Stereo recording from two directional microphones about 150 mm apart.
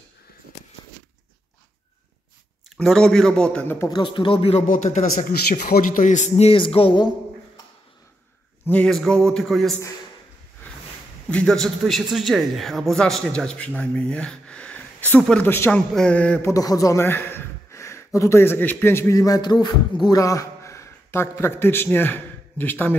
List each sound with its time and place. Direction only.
2.8 s a man's voice: centre (ahead or behind)
3.9 s speech: 30° left (ahead or behind)
4.6 s a man's voice: 55° left (ahead or behind); by 7.1 s 35° left (ahead or behind)
8.6 s a man's voice: 5° left (ahead or behind)
11.2 s a man's voice: 5° left (ahead or behind)
15.9 s mantra: 5° left (ahead or behind)
16.5 s a man's voice: 25° left (ahead or behind)